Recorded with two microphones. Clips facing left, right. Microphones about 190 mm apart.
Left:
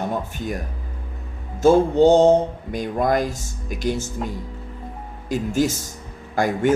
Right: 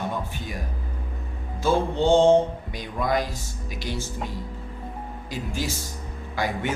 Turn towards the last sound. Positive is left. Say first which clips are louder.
# left 7 dB
turn(degrees=45)  # may be behind; listen again after turning